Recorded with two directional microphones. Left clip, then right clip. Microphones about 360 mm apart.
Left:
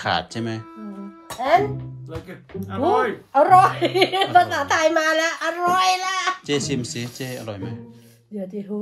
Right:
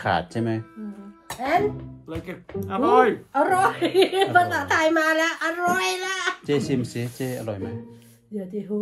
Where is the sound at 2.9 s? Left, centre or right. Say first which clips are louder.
Right 2 dB; centre.